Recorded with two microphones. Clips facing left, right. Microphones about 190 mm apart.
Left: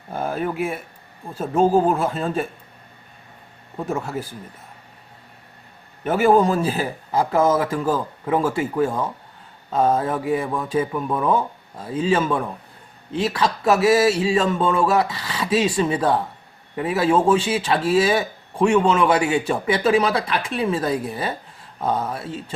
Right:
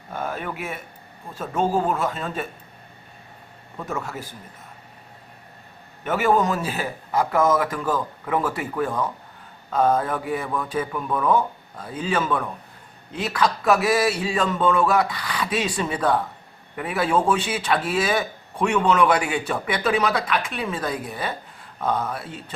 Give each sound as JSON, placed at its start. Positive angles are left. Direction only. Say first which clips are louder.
{"t": 0.1, "sound": "speech", "louder": "left 5 dB", "side_deg": 35}
{"t": 3.8, "sound": "speech", "louder": "left 5 dB", "side_deg": 30}
{"t": 6.1, "sound": "speech", "louder": "left 4 dB", "side_deg": 30}